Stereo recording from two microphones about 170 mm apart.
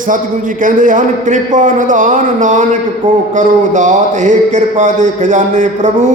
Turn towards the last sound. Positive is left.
turn(degrees=-45)  # may be behind; listen again after turning